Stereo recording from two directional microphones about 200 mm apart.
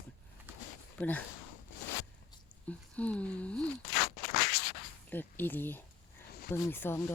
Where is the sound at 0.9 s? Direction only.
10° left (ahead or behind).